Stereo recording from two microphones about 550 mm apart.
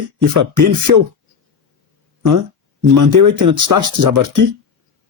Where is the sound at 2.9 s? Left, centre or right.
Right.